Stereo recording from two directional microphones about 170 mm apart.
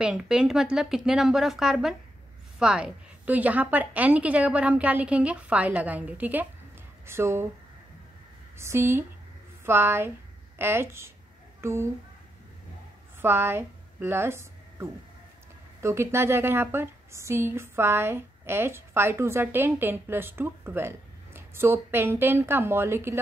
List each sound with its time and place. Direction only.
0.0 s a woman's voice: 5° right (ahead or behind)
8.5 s a woman's voice: 15° right (ahead or behind)
13.2 s a woman's voice: 15° right (ahead or behind)